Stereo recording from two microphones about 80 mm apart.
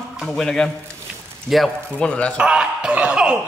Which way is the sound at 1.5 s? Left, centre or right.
Centre.